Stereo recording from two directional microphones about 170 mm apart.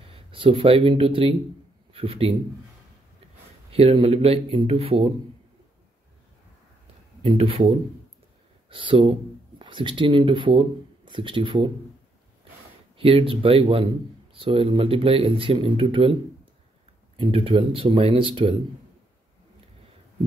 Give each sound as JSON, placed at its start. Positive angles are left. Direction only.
{"t": 0.1, "sound": "speech", "side_deg": -30}
{"t": 3.7, "sound": "speech", "side_deg": -35}
{"t": 7.2, "sound": "speech", "side_deg": -30}
{"t": 12.9, "sound": "speech", "side_deg": -35}
{"t": 17.2, "sound": "speech", "side_deg": -30}